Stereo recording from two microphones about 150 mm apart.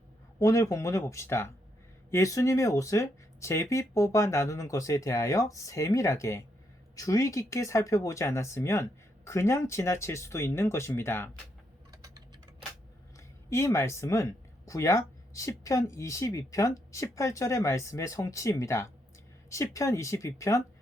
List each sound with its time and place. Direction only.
0.3 s speech: 20° left (ahead or behind)
11.9 s typing: 25° right (ahead or behind)
13.1 s speech: 20° left (ahead or behind)